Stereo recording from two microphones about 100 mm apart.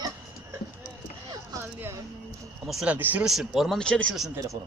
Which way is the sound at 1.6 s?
25° right (ahead or behind).